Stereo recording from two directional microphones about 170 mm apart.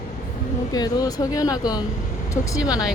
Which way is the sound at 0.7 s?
20° left (ahead or behind).